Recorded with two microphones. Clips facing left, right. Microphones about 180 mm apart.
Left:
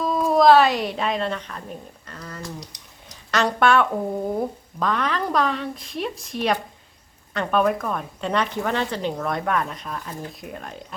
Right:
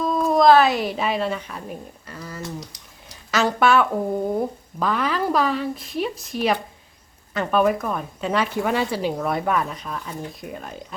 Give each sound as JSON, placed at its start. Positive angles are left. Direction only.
{"t": 0.0, "sound": "speech", "side_deg": 0}